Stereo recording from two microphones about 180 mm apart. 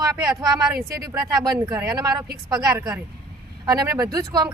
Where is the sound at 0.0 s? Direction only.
20° right (ahead or behind).